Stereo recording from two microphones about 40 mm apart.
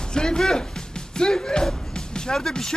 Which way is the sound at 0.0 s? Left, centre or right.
Centre.